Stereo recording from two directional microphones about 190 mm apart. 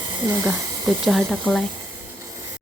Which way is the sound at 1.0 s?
Centre (ahead or behind).